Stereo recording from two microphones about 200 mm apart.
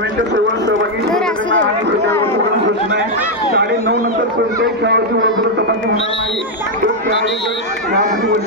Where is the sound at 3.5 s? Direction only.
55° right (ahead or behind).